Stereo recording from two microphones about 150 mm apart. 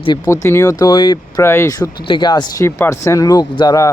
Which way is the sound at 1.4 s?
15° left (ahead or behind).